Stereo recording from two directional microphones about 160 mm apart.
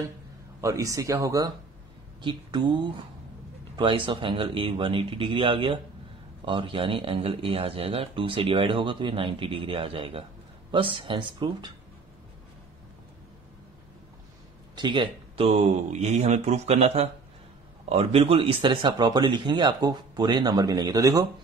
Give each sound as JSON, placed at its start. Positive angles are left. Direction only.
{"t": 0.6, "sound": "speech", "side_deg": -20}
{"t": 14.8, "sound": "speech", "side_deg": -30}